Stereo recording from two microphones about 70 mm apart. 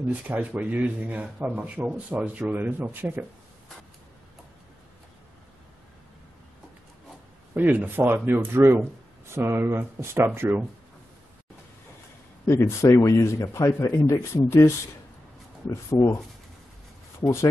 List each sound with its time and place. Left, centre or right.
0.1 s speech: right
7.5 s speech: right
12.4 s speech: left
15.7 s speech: left